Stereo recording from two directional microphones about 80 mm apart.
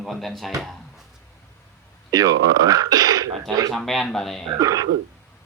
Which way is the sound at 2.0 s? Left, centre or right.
Right.